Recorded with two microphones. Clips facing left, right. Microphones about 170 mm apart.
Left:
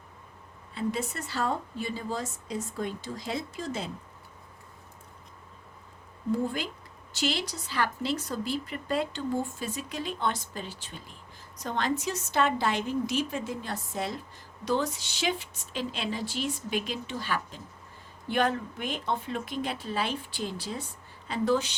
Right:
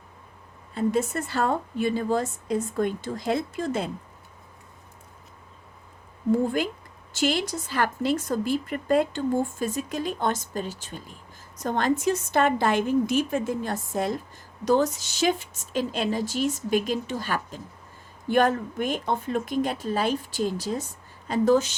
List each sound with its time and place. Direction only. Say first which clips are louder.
0.7 s a woman's voice: right 7 dB; 45° right (ahead or behind)
7.1 s speech: right 6 dB; 50° right (ahead or behind)